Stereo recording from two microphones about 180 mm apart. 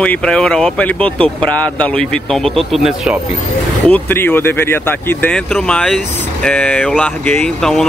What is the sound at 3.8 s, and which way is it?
Speech, 10° left (ahead or behind).